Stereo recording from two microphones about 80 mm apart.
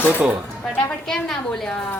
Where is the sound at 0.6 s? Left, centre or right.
Centre.